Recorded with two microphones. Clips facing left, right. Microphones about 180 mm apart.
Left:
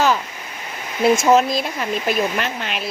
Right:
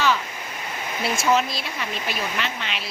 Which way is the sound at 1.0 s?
45° left (ahead or behind).